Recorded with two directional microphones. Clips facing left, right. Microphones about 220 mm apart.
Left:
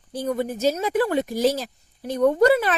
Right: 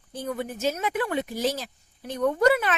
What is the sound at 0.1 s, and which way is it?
A woman's voice, 40° left (ahead or behind).